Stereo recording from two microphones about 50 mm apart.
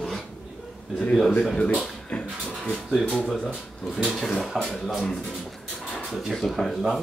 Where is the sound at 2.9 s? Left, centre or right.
Centre.